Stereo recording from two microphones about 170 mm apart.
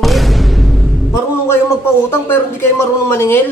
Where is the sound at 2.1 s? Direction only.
15° left (ahead or behind).